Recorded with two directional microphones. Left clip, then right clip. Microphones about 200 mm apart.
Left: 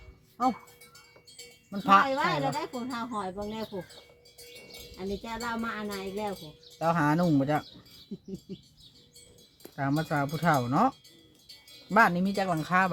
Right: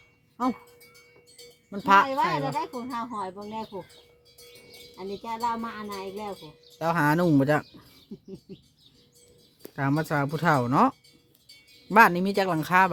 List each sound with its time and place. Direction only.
0.4 s speech: 55° right (ahead or behind)
1.7 s speech: 50° right (ahead or behind)
2.0 s wind chime: 10° right (ahead or behind)
3.3 s speech: 5° right (ahead or behind)
4.9 s wind chime: 10° right (ahead or behind)
6.7 s speech: 55° right (ahead or behind)
9.6 s speech: 60° right (ahead or behind)